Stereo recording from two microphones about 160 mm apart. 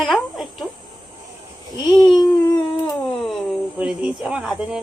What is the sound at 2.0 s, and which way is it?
Babbling, 30° left (ahead or behind).